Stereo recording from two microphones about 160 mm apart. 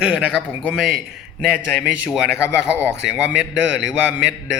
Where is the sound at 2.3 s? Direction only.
15° left (ahead or behind).